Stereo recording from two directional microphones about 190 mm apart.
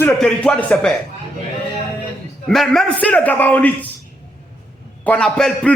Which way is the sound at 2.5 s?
Centre (ahead or behind).